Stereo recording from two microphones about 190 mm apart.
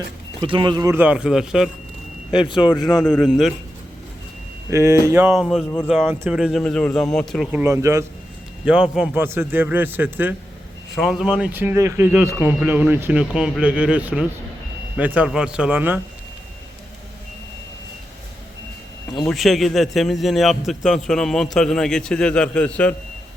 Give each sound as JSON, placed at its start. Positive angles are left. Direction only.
{"t": 0.3, "sound": "speech", "side_deg": -25}
{"t": 2.6, "sound": "speech", "side_deg": 20}
{"t": 3.2, "sound": "a man's voice", "side_deg": 0}
{"t": 4.7, "sound": "speech", "side_deg": -15}
{"t": 5.3, "sound": "a man's voice", "side_deg": 0}
{"t": 7.6, "sound": "speech", "side_deg": -15}
{"t": 8.6, "sound": "speech", "side_deg": -5}
{"t": 19.3, "sound": "a man's voice", "side_deg": 0}